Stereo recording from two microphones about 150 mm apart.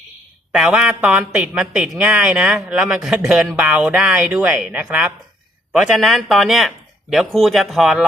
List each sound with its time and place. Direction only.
0.5 s speech: 5° right (ahead or behind)